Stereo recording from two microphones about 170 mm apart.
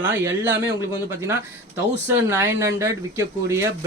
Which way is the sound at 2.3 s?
15° right (ahead or behind).